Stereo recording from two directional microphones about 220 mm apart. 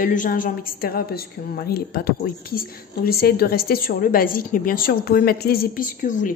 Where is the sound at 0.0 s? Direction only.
35° left (ahead or behind).